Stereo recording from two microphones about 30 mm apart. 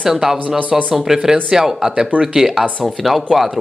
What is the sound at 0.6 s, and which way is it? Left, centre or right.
Speech, right.